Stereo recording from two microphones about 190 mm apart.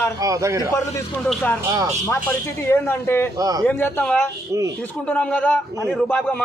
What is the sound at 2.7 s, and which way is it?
Speech, 10° left (ahead or behind).